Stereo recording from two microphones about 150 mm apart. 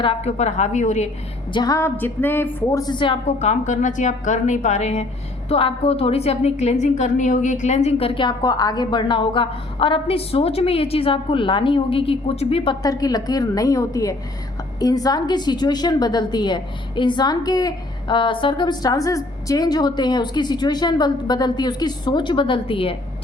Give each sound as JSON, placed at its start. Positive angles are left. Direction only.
{"t": 0.0, "sound": "a woman's voice", "side_deg": 40}
{"t": 1.5, "sound": "a woman's voice", "side_deg": 25}
{"t": 2.0, "sound": "a woman's voice", "side_deg": 15}
{"t": 2.8, "sound": "a woman's voice", "side_deg": 30}
{"t": 3.2, "sound": "a woman's voice", "side_deg": 50}
{"t": 12.8, "sound": "a woman's voice", "side_deg": 25}